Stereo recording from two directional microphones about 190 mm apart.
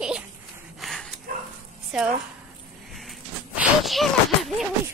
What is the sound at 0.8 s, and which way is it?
Dog, centre (ahead or behind).